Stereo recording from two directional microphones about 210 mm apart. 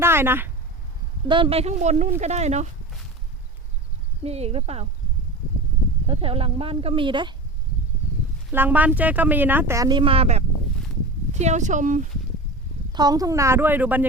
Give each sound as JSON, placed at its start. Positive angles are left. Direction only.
{"t": 0.0, "sound": "speech", "side_deg": -10}
{"t": 1.3, "sound": "speech", "side_deg": -25}
{"t": 4.2, "sound": "speech", "side_deg": -30}
{"t": 6.1, "sound": "speech", "side_deg": -25}
{"t": 8.5, "sound": "speech", "side_deg": -10}
{"t": 12.9, "sound": "speech", "side_deg": -20}